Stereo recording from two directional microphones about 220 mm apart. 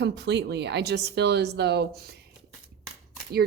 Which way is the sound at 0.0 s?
50° right (ahead or behind).